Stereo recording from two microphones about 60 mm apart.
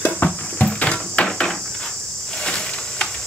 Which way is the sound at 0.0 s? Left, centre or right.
Left.